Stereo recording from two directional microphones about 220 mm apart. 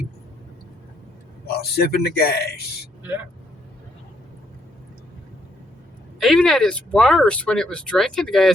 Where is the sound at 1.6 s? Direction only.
45° left (ahead or behind).